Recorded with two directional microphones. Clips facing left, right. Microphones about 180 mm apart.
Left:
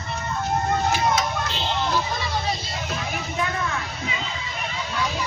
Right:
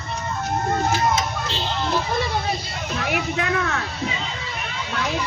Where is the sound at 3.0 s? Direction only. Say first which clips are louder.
Right 7 dB; 70° right (ahead or behind).